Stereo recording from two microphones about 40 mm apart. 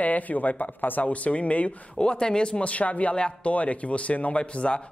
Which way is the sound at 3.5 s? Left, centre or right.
Left.